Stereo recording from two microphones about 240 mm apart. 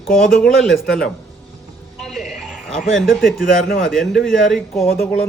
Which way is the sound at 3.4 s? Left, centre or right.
Left.